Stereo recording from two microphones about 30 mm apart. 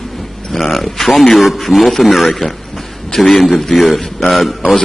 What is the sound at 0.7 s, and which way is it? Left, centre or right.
Speech, centre.